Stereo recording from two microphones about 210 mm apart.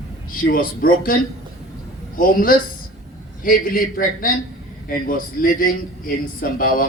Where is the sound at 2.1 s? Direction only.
40° left (ahead or behind).